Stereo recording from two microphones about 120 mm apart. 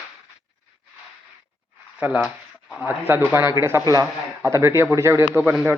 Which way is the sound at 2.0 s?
10° right (ahead or behind).